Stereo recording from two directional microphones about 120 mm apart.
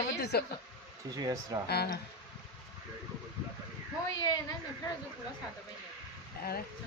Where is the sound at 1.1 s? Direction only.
30° right (ahead or behind).